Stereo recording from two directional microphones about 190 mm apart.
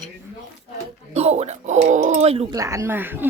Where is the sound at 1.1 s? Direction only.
35° right (ahead or behind).